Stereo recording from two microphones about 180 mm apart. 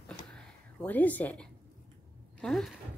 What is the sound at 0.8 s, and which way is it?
Speech, 10° left (ahead or behind).